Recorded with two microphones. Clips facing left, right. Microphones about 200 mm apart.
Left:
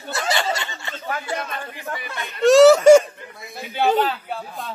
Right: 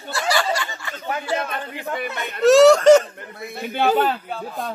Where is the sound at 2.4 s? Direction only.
Centre (ahead or behind).